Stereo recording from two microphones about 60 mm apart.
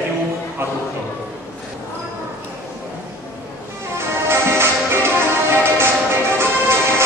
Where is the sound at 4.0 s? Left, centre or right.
Right.